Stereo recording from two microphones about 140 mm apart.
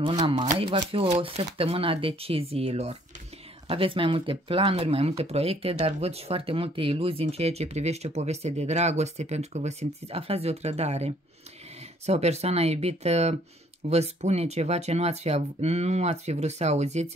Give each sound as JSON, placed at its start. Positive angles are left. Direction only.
{"t": 0.3, "sound": "speech", "side_deg": -40}